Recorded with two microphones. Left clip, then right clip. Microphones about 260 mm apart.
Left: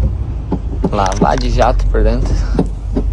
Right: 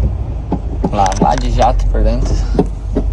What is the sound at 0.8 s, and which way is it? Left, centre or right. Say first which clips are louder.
Speech: right 1 dB; centre.